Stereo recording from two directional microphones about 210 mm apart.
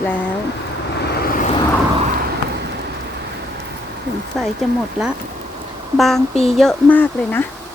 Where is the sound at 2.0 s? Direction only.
40° right (ahead or behind).